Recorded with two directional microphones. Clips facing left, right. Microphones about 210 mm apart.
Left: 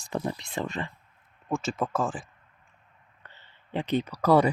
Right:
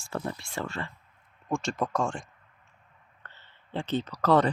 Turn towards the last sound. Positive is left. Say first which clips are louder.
# left 2 dB
turn(degrees=10)  # may be behind; listen again after turning